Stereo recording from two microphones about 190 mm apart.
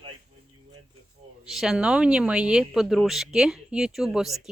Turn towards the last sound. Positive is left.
turn(degrees=0)  # may be behind; listen again after turning